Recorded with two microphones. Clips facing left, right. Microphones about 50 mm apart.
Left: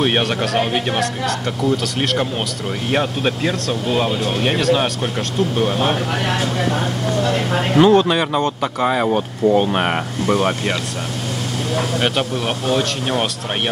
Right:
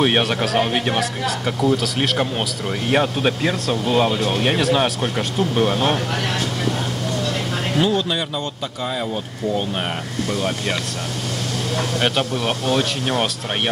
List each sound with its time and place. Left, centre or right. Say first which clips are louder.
0.0 s speech: even; centre
7.7 s speech: left 8 dB; left
11.7 s speech: left 2 dB; centre